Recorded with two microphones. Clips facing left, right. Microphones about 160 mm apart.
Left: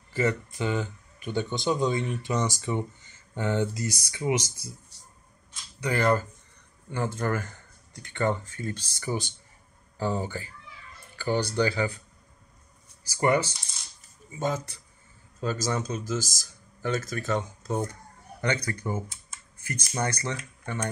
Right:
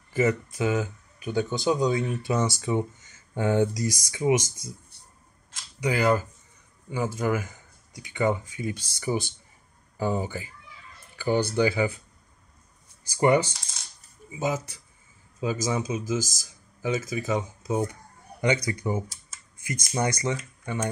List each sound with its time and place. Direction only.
0.1 s speech: 10° right (ahead or behind)
5.8 s speech: 10° right (ahead or behind)
14.3 s speech: 10° right (ahead or behind)